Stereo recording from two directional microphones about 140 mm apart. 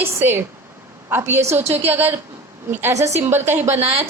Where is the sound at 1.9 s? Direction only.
15° right (ahead or behind).